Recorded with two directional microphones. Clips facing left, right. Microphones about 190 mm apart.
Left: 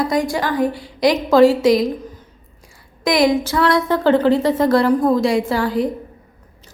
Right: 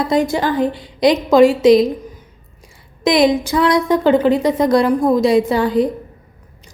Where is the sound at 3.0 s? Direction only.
20° right (ahead or behind).